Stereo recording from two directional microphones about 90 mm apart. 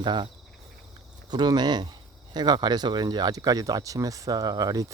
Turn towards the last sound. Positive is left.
turn(degrees=-45)  # may be behind; listen again after turning